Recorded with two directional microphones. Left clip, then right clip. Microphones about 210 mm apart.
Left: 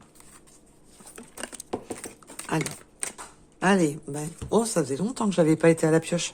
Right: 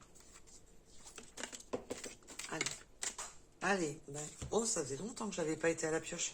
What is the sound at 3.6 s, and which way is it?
Speech, 50° left (ahead or behind).